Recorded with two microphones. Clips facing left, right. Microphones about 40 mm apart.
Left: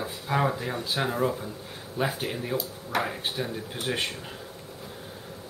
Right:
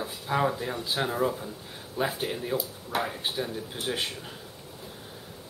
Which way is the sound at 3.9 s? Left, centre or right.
Left.